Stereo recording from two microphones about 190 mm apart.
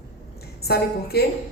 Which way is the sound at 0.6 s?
55° left (ahead or behind).